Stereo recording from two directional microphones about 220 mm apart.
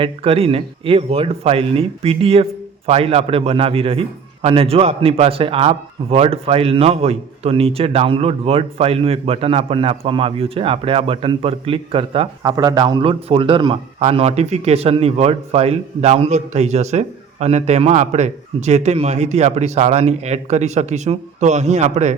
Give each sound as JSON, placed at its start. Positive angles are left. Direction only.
{"t": 0.0, "sound": "speech", "side_deg": -25}